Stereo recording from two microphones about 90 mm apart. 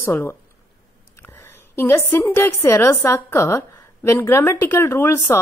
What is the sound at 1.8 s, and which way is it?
A woman's voice, 25° left (ahead or behind).